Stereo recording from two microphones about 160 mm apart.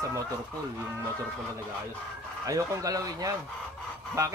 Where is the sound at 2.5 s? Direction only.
20° right (ahead or behind).